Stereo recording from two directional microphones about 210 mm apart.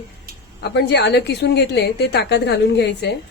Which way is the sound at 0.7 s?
55° left (ahead or behind).